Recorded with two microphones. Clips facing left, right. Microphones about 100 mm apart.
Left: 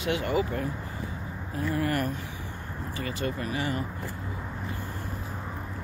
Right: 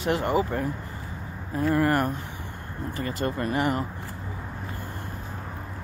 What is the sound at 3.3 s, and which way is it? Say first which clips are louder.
Speech: right 6 dB; 45° right (ahead or behind).